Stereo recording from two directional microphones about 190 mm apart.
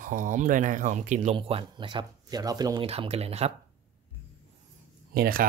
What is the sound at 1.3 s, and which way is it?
Speech, 25° right (ahead or behind).